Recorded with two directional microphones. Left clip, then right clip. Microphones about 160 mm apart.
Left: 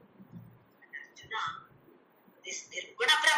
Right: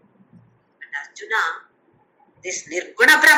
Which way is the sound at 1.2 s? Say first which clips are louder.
Right 14 dB; 90° right.